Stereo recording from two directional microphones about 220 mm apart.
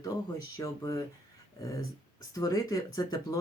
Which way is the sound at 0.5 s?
15° left (ahead or behind).